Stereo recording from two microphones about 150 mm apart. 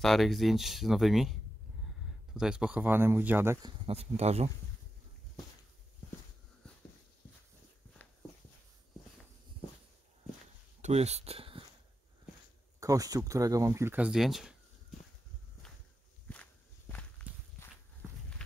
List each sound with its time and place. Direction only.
0.0 s speech: centre (ahead or behind)
2.3 s speech: 5° right (ahead or behind)
3.6 s speech: 40° right (ahead or behind)
10.8 s speech: 45° right (ahead or behind)
12.8 s speech: 25° right (ahead or behind); by 15.0 s centre (ahead or behind)
16.3 s walk: 10° left (ahead or behind)